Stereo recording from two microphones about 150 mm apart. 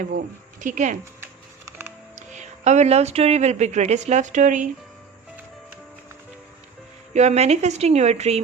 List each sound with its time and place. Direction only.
0.6 s speech: 55° right (ahead or behind)
2.1 s speech: 50° right (ahead or behind)
7.1 s a woman's voice: 50° right (ahead or behind)